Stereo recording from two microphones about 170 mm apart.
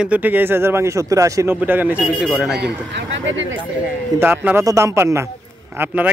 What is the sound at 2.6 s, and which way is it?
Speech, 85° right.